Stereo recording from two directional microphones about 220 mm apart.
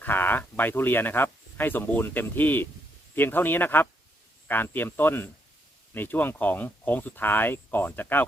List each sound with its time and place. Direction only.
0.0 s speech: 10° left (ahead or behind)